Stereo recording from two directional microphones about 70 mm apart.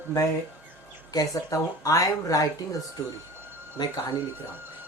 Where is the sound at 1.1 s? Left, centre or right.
Left.